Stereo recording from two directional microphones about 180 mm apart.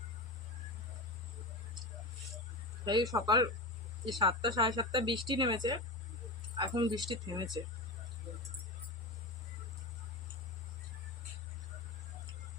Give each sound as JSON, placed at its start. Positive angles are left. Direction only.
{"t": 2.8, "sound": "speech", "side_deg": -20}